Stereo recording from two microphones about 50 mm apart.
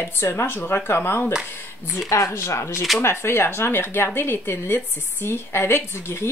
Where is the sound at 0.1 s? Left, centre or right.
Left.